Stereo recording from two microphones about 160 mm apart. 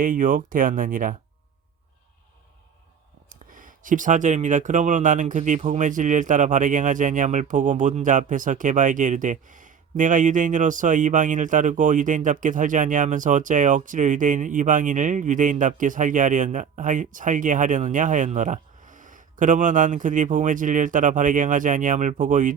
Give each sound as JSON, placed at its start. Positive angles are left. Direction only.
{"t": 0.0, "sound": "speech", "side_deg": -60}
{"t": 3.2, "sound": "speech", "side_deg": -55}